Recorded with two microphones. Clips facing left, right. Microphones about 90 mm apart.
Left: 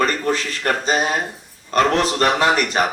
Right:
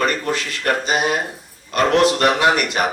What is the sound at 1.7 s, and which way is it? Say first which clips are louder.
Speech: right 1 dB; 35° left (ahead or behind).